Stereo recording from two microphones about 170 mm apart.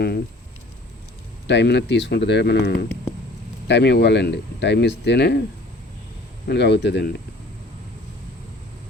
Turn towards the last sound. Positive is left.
turn(degrees=90)